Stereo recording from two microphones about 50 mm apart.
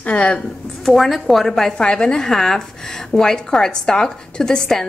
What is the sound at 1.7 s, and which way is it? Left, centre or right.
A woman's voice, centre.